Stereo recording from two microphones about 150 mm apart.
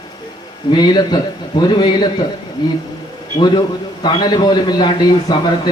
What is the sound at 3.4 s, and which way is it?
A man's voice, 30° left (ahead or behind).